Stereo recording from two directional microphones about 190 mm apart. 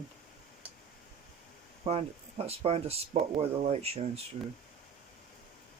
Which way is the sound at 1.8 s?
30° right (ahead or behind).